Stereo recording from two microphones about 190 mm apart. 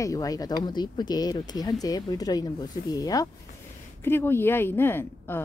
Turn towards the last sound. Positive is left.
turn(degrees=10)  # may be behind; listen again after turning